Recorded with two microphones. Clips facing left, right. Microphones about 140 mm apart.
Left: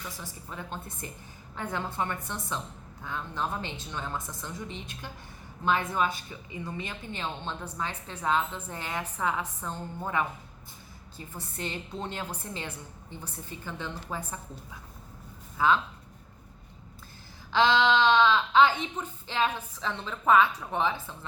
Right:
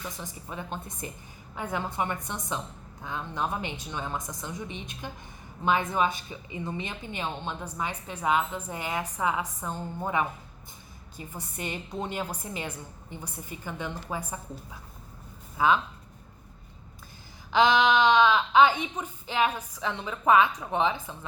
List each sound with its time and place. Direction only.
0.2 s a woman's voice: 20° right (ahead or behind)
15.5 s speech: 15° right (ahead or behind)
17.5 s a woman's voice: 15° right (ahead or behind)